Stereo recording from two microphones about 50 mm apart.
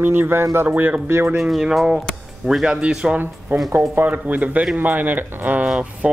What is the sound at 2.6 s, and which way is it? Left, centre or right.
Speech, centre.